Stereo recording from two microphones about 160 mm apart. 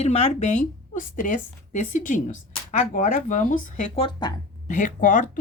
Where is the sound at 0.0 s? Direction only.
40° left (ahead or behind).